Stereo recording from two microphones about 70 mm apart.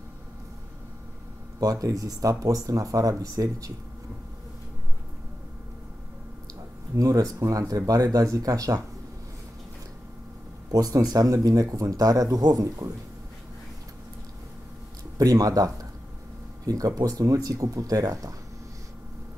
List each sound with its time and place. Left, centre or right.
1.6 s speech: right
7.0 s speech: right
10.7 s speech: right
15.1 s speech: right